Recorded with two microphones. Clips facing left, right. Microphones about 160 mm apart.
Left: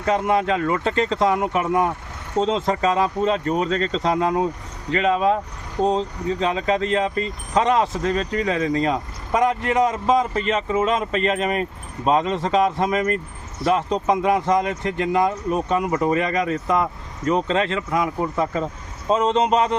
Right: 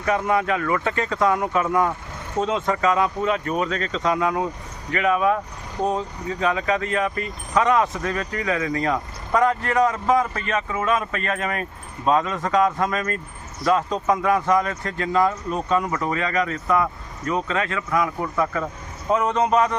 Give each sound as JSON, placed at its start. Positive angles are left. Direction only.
{"t": 0.0, "sound": "speech", "side_deg": 25}